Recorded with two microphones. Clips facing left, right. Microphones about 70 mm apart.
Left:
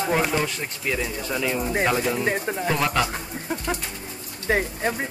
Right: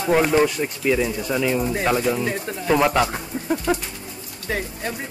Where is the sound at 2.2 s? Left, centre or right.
Left.